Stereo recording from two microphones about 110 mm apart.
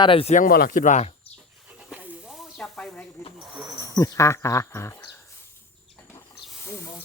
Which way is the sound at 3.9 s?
30° left (ahead or behind).